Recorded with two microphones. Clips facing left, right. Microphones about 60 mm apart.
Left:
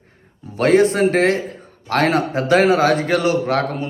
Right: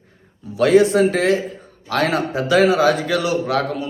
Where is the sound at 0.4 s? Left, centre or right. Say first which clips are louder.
Even; left.